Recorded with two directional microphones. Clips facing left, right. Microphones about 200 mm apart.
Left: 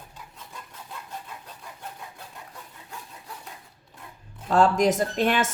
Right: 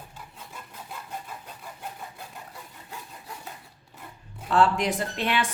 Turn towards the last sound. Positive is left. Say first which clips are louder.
# left 4 dB
turn(degrees=45)  # may be behind; listen again after turning